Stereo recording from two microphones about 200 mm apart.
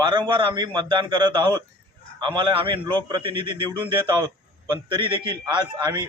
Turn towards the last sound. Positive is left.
turn(degrees=-20)  # may be behind; listen again after turning